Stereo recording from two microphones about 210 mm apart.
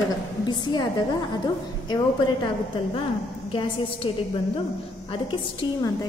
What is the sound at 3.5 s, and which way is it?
A woman's voice, 25° left (ahead or behind).